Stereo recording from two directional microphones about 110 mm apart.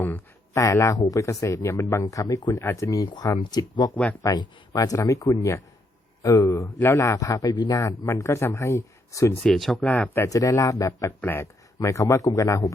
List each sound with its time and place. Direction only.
0.0 s a sound: 15° left (ahead or behind)
0.6 s speech: 30° left (ahead or behind)
9.4 s speech: 5° left (ahead or behind)
9.9 s speech: 15° left (ahead or behind)
10.2 s speech: 30° left (ahead or behind)